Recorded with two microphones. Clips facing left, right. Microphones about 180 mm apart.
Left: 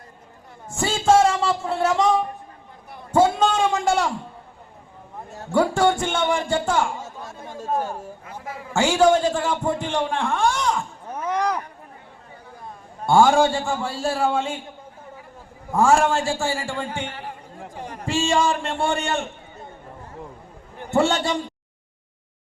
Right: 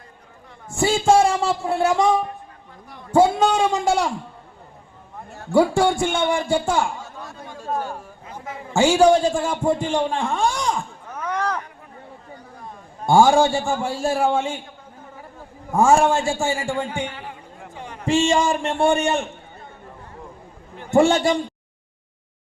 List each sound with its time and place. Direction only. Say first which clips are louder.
0.8 s a man's voice: right 1 dB; 10° right (ahead or behind)
5.5 s a man's voice: right 2 dB; 10° right (ahead or behind)
8.7 s a man's voice: right 2 dB; 10° right (ahead or behind)
11.1 s chop: left 2 dB; 25° left (ahead or behind)
13.1 s a man's voice: right 1 dB; 10° right (ahead or behind)
15.7 s a man's voice: right 2 dB; 15° right (ahead or behind)
17.7 s a sound: left 2 dB; 45° left (ahead or behind)
18.0 s a man's voice: right 3 dB; 20° right (ahead or behind)
20.9 s a man's voice: right 4 dB; 15° right (ahead or behind)